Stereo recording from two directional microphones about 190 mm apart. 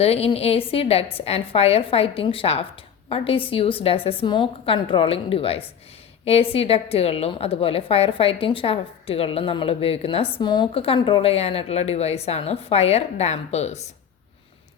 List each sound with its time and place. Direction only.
0.0 s a woman's voice: 30° left (ahead or behind)